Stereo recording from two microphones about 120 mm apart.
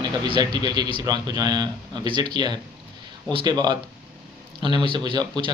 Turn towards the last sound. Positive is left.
turn(degrees=-35)  # may be behind; listen again after turning